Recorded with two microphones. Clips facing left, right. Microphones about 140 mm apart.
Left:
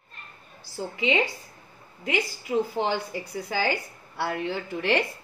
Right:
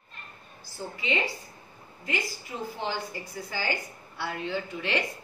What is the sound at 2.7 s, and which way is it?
Speech, 75° left (ahead or behind).